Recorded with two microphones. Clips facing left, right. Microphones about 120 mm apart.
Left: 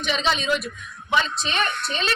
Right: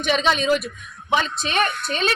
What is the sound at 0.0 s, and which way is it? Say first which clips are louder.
A woman's voice: right 4 dB; 50° right (ahead or behind).